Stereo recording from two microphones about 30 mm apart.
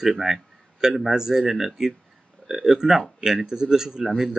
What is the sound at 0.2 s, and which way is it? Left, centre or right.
Speech, centre.